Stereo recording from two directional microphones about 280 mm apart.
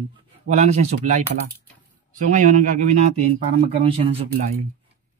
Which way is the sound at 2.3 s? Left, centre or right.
Right.